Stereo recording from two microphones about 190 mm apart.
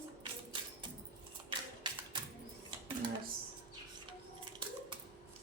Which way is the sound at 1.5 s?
25° right (ahead or behind).